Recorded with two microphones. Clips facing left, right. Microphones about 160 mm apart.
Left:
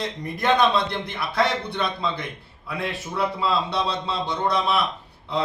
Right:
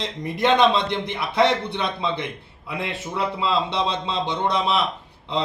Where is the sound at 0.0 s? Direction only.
25° right (ahead or behind).